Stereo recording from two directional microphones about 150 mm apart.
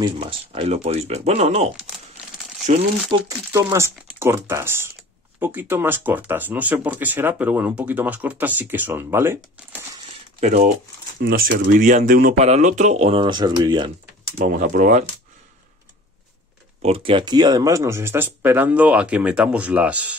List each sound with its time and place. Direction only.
0.0 s speech: 35° right (ahead or behind)
2.7 s speech: 50° right (ahead or behind)
3.1 s speech: 25° right (ahead or behind)
11.2 s speech: 75° right (ahead or behind)
12.4 s speech: 50° right (ahead or behind)
13.1 s speech: 35° right (ahead or behind)
14.4 s speech: 60° right (ahead or behind)
16.8 s speech: 40° right (ahead or behind); by 20.2 s 10° right (ahead or behind)